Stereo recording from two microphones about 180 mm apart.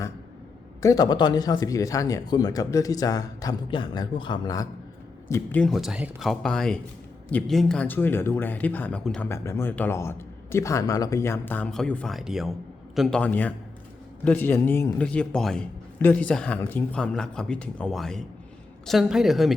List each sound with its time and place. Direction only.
0.8 s speech: 20° left (ahead or behind)
5.3 s a man's voice: 10° left (ahead or behind)